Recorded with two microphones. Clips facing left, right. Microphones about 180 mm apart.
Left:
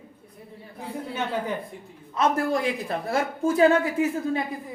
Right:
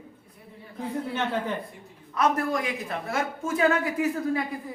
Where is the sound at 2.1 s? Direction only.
25° left (ahead or behind).